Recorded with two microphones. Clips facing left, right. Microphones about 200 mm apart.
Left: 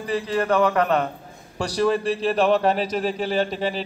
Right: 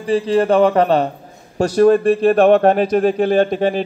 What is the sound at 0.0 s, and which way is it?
Speech, 30° right (ahead or behind).